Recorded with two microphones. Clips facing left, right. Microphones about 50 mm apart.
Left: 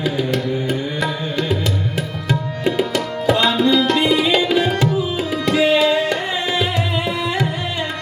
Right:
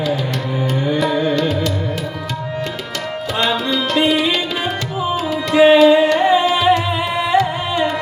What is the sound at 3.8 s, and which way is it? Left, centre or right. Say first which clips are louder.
Tabla: even; centre.